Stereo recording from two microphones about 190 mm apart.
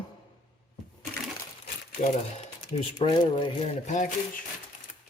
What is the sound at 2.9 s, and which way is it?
Speech, 25° left (ahead or behind).